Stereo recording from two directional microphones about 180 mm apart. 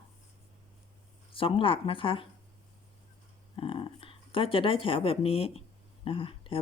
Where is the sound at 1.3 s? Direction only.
30° left (ahead or behind).